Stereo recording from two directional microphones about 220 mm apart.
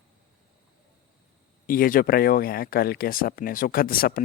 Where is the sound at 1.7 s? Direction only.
40° left (ahead or behind).